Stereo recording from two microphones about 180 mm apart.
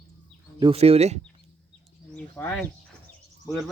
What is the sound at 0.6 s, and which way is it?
Speech, 35° right (ahead or behind).